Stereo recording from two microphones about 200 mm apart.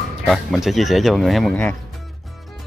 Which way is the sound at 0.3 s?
Centre (ahead or behind).